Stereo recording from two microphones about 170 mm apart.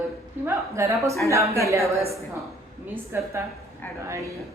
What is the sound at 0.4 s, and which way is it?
A woman's voice, 15° right (ahead or behind).